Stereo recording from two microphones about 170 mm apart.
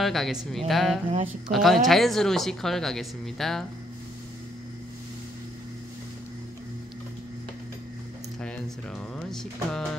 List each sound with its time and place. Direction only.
0.0 s speech: centre (ahead or behind)
9.1 s speech: 5° left (ahead or behind)